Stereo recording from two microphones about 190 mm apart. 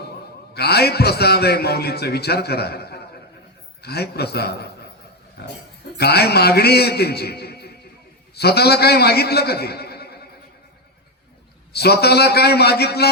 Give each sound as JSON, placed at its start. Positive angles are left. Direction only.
{"t": 0.5, "sound": "a man's voice", "side_deg": 60}
{"t": 11.7, "sound": "a man's voice", "side_deg": 60}